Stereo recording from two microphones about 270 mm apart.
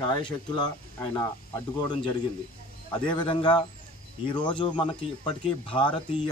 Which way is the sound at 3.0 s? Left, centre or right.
Centre.